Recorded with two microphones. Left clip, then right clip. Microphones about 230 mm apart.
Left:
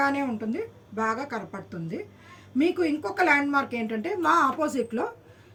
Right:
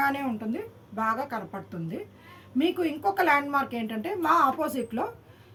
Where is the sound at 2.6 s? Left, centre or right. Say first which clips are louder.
Left 1 dB; centre.